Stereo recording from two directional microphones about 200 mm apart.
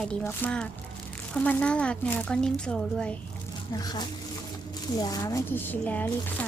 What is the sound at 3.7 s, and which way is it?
Speech, 20° left (ahead or behind).